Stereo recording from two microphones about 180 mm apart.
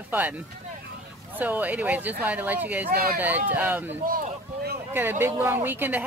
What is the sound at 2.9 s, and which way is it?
Speech, 55° right (ahead or behind).